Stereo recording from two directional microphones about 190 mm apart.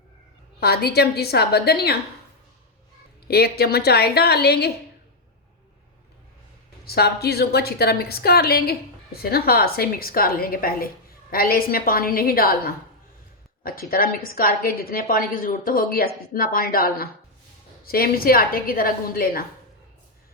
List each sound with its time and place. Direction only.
0.6 s a woman's voice: 55° left (ahead or behind)
3.2 s a woman's voice: 55° left (ahead or behind)
6.8 s a woman's voice: 55° left (ahead or behind)
13.6 s a sound: 50° left (ahead or behind)
13.9 s a woman's voice: 50° left (ahead or behind)